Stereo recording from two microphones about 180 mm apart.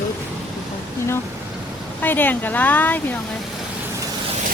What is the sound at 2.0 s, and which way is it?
Speech, 10° left (ahead or behind).